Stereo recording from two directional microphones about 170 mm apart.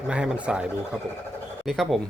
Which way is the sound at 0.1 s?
5° right (ahead or behind).